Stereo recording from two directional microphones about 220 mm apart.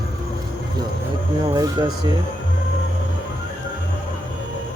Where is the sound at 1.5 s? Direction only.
15° right (ahead or behind).